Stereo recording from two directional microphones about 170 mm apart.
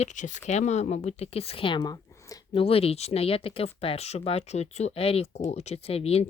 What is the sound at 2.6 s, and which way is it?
Speech, 35° left (ahead or behind).